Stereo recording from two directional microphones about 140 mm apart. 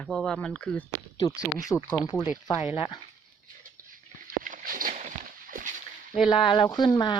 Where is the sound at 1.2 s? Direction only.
25° left (ahead or behind).